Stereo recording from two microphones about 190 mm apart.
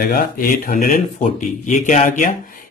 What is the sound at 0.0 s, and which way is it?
Speech, 50° left (ahead or behind).